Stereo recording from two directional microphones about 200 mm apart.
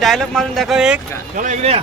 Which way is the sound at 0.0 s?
Centre (ahead or behind).